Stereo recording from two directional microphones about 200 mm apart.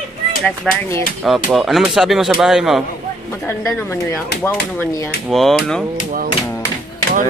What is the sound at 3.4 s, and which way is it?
Speech, 15° left (ahead or behind).